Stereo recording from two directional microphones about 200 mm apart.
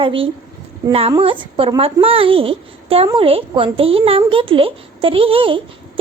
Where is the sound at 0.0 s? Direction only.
25° right (ahead or behind).